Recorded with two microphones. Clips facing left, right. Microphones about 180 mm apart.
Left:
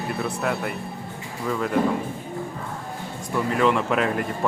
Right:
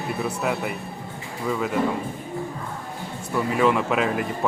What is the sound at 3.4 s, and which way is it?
Speech, 5° right (ahead or behind).